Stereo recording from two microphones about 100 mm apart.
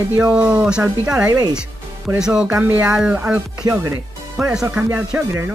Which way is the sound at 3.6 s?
40° right (ahead or behind).